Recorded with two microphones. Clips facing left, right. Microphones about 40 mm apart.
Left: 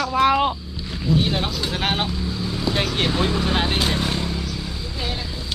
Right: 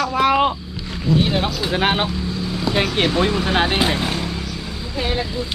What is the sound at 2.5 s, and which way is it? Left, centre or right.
Speech, centre.